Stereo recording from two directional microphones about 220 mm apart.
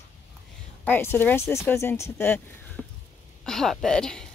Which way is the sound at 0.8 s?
10° left (ahead or behind).